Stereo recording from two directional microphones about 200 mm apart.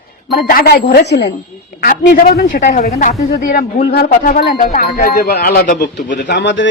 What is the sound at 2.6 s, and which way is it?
Speech, 40° left (ahead or behind).